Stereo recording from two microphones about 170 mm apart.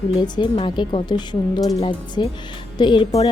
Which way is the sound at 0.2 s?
25° left (ahead or behind).